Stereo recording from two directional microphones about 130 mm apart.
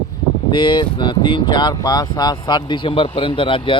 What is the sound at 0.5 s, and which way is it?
Speech, 40° left (ahead or behind).